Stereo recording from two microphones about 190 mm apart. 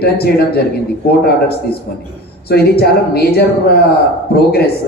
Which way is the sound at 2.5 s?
55° left (ahead or behind).